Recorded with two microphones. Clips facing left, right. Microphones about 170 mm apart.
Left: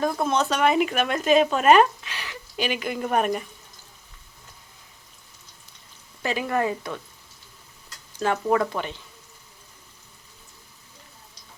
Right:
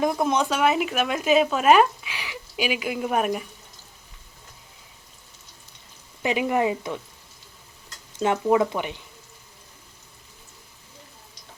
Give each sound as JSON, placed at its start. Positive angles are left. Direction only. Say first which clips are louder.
{"t": 0.0, "sound": "speech", "louder": "right 1 dB", "side_deg": -15}
{"t": 6.2, "sound": "speech", "louder": "right 2 dB", "side_deg": -15}
{"t": 8.2, "sound": "speech", "louder": "right 2 dB", "side_deg": -20}